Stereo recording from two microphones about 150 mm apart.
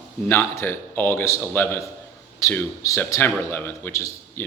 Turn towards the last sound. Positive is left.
turn(degrees=15)  # may be behind; listen again after turning